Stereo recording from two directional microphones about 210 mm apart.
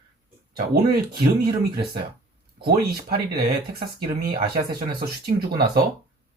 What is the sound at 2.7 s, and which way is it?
Speech, 45° right (ahead or behind).